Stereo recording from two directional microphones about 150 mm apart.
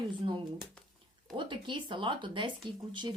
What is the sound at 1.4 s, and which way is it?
A woman's voice, 35° right (ahead or behind).